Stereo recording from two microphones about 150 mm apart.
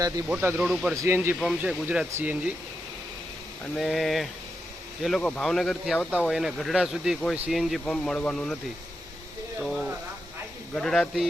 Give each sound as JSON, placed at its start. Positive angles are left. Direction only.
{"t": 0.3, "sound": "speech", "side_deg": -10}
{"t": 0.9, "sound": "speech", "side_deg": -15}
{"t": 1.4, "sound": "speech", "side_deg": -5}
{"t": 3.8, "sound": "speech", "side_deg": 0}
{"t": 9.6, "sound": "speech", "side_deg": 0}